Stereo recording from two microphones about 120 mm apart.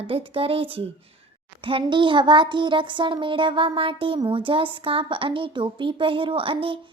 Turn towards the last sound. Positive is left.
turn(degrees=-50)  # may be behind; listen again after turning